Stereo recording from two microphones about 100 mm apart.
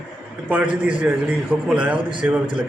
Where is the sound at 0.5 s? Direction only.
15° right (ahead or behind).